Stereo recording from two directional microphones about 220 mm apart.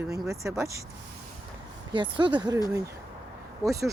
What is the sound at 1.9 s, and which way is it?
Speech, 20° right (ahead or behind).